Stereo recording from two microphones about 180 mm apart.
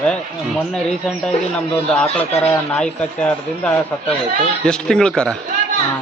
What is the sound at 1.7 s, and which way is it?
A man's voice, 5° left (ahead or behind).